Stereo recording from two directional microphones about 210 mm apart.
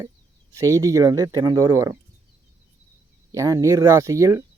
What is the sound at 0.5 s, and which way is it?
Speech, 15° right (ahead or behind).